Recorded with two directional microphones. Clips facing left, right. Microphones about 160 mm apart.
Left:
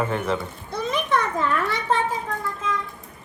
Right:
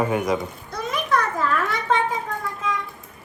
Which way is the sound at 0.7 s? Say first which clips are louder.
Left 4 dB; 30° left (ahead or behind).